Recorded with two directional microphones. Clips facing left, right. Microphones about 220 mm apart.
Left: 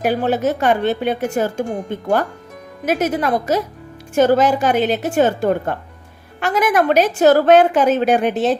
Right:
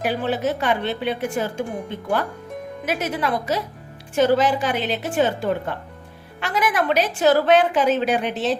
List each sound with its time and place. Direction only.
0.0 s speech: 45° left (ahead or behind)